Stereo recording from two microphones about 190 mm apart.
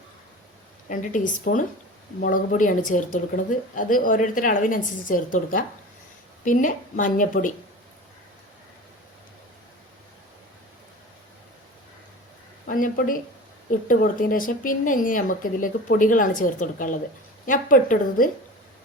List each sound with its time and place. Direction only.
0.9 s a woman's voice: 45° left (ahead or behind)
12.6 s a woman's voice: 50° left (ahead or behind)